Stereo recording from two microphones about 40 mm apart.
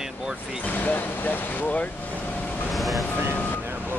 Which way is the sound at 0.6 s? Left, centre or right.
Left.